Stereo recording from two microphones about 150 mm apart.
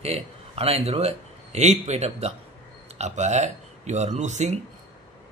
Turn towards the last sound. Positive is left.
turn(degrees=-50)  # may be behind; listen again after turning